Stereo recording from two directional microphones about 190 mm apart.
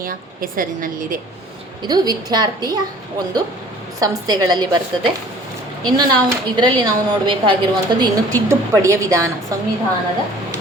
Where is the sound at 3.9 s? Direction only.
20° right (ahead or behind).